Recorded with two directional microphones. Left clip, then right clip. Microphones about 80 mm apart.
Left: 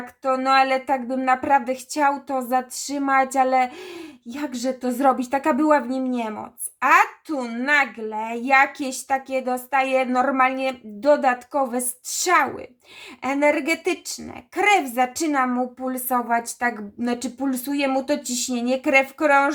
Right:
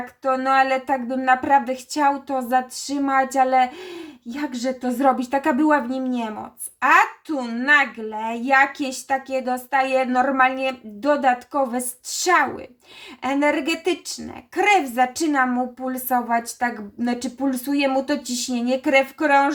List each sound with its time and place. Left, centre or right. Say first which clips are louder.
0.2 s a woman's voice: even; left